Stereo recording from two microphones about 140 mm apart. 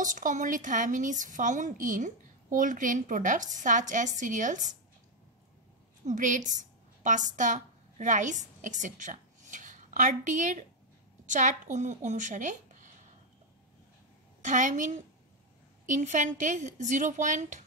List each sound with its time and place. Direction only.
0.0 s speech: 65° right (ahead or behind)
6.0 s a woman's voice: 65° right (ahead or behind)
14.4 s speech: 65° right (ahead or behind)